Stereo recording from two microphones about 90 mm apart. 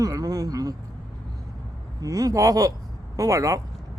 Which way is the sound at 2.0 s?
40° right (ahead or behind).